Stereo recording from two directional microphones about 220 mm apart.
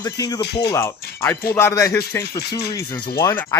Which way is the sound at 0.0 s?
15° left (ahead or behind).